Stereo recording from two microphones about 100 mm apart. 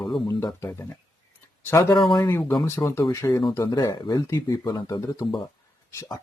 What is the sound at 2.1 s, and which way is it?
Speech, 45° left (ahead or behind).